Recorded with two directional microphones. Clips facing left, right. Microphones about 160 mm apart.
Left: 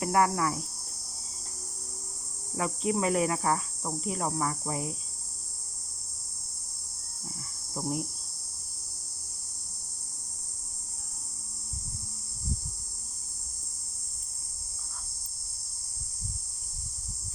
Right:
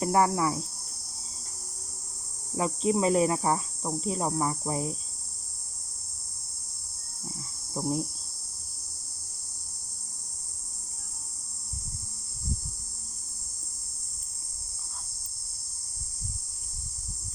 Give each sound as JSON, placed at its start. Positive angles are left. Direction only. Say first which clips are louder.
{"t": 0.0, "sound": "speech", "louder": "right 2 dB", "side_deg": -25}
{"t": 2.6, "sound": "speech", "louder": "right 3 dB", "side_deg": -25}
{"t": 7.7, "sound": "cricket", "louder": "right 3 dB", "side_deg": -20}